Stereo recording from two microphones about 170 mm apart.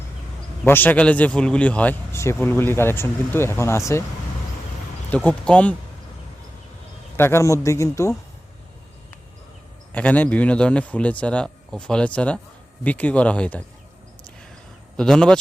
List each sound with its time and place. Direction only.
0.6 s speech: 10° left (ahead or behind)
5.1 s speech: 5° left (ahead or behind)
7.2 s speech: 15° left (ahead or behind)
9.9 s speech: 10° left (ahead or behind)
14.9 s speech: 5° left (ahead or behind)